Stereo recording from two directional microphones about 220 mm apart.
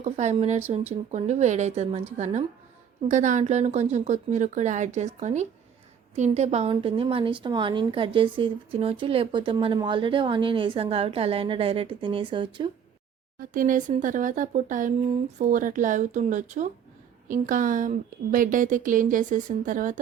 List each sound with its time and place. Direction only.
0.0 s a woman's voice: 30° right (ahead or behind)
13.4 s speech: 40° right (ahead or behind)